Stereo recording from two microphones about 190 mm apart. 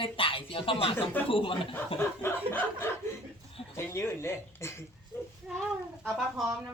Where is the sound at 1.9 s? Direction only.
10° left (ahead or behind).